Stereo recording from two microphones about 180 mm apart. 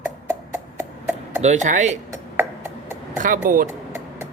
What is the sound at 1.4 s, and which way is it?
Speech, 40° right (ahead or behind).